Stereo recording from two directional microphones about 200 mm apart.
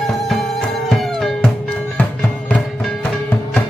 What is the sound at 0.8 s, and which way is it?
Music, centre (ahead or behind).